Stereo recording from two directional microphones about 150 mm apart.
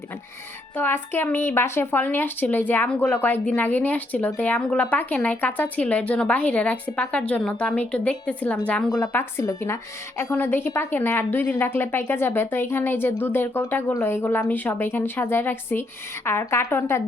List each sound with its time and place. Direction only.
0.8 s a woman's voice: 15° left (ahead or behind)